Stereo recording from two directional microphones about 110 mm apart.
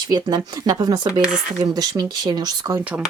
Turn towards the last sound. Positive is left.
turn(degrees=-15)  # may be behind; listen again after turning